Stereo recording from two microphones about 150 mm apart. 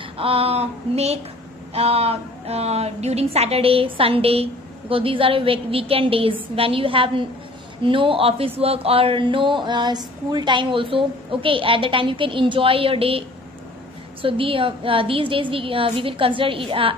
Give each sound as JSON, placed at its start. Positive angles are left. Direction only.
{"t": 0.2, "sound": "speech", "side_deg": -40}
{"t": 14.2, "sound": "speech", "side_deg": -35}